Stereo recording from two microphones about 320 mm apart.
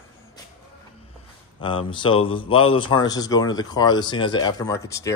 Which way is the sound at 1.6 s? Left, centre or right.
Centre.